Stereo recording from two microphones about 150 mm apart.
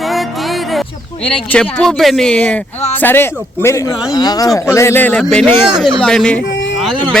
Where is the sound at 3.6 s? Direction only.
20° left (ahead or behind).